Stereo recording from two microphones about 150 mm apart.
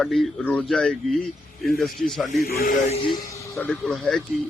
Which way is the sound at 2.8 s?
45° left (ahead or behind).